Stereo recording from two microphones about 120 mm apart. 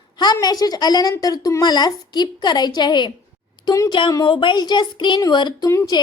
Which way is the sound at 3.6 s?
25° left (ahead or behind).